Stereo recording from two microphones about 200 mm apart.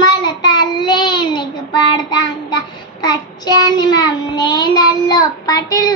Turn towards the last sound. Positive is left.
turn(degrees=20)  # may be behind; listen again after turning